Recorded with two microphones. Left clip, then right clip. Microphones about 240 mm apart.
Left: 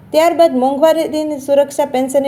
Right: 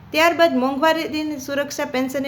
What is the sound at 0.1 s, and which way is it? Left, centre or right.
A woman's voice, centre.